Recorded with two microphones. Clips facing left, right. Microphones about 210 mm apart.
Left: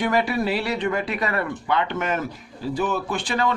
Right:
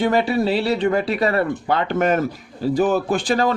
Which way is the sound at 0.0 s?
25° right (ahead or behind).